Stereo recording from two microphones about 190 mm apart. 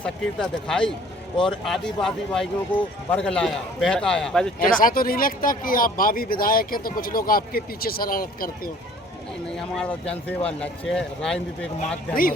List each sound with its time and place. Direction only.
0.0 s speech: 5° left (ahead or behind)
4.6 s speech: 45° left (ahead or behind)
9.6 s speech: 5° left (ahead or behind)